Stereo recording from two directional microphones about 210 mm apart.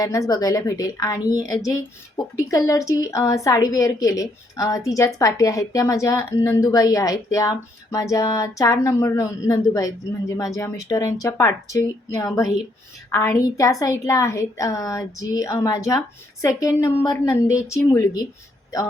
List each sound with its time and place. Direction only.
0.0 s a woman's voice: 15° left (ahead or behind)